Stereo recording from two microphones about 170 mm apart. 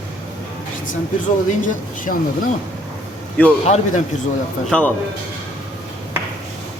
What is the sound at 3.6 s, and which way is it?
Speech, 45° left (ahead or behind).